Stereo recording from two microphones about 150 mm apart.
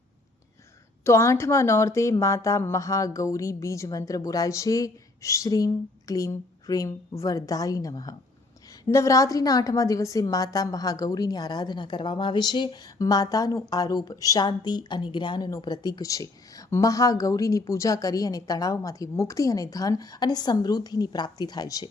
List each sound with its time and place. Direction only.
1.0 s a woman's voice: 20° left (ahead or behind)